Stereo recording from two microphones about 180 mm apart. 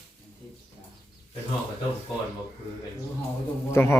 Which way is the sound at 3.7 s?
15° left (ahead or behind).